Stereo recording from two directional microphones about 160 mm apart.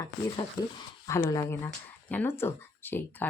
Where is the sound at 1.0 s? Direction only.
20° left (ahead or behind).